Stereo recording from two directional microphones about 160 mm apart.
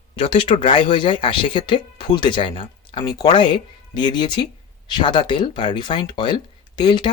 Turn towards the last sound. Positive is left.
turn(degrees=30)  # may be behind; listen again after turning